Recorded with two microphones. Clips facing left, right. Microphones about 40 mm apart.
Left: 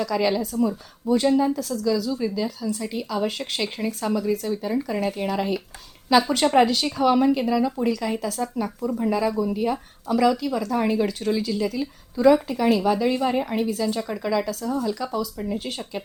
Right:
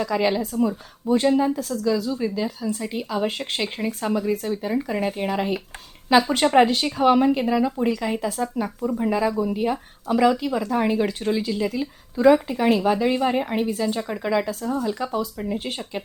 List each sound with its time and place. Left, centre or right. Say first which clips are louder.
0.0 s speech: right 1 dB; centre